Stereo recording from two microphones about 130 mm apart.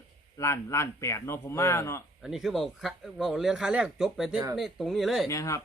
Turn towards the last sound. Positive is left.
turn(degrees=25)  # may be behind; listen again after turning